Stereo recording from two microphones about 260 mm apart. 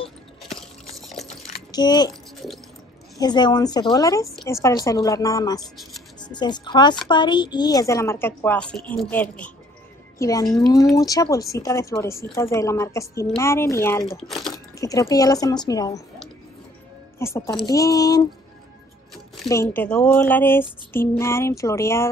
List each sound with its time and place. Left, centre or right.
0.5 s biting: centre
1.7 s speech: centre
3.2 s a woman's voice: centre
14.5 s speech: centre
17.2 s speech: centre
19.5 s speech: centre